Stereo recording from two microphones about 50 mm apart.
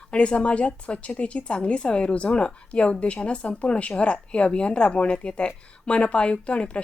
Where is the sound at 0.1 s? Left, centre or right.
Left.